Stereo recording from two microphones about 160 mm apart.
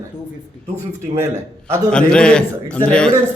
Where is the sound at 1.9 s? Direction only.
5° left (ahead or behind).